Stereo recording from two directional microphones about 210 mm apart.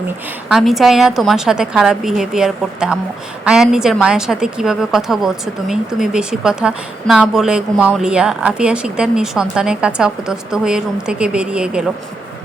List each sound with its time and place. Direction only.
0.4 s a woman's voice: centre (ahead or behind)